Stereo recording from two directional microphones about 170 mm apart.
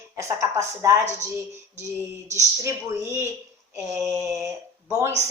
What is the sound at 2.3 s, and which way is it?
Speech, 15° right (ahead or behind).